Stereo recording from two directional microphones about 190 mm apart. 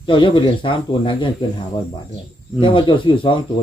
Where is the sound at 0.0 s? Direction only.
25° left (ahead or behind).